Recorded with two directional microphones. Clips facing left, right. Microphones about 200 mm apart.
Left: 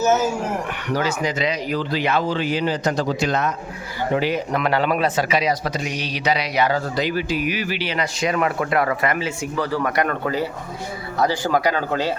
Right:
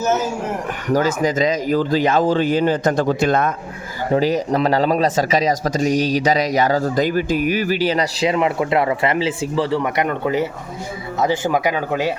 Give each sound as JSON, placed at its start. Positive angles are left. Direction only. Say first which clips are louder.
{"t": 0.9, "sound": "a man's voice", "louder": "right 6 dB", "side_deg": -45}
{"t": 4.1, "sound": "a man's voice", "louder": "right 5 dB", "side_deg": -40}
{"t": 8.3, "sound": "speech", "louder": "right 2 dB", "side_deg": -20}